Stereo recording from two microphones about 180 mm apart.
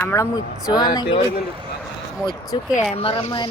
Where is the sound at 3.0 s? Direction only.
30° left (ahead or behind).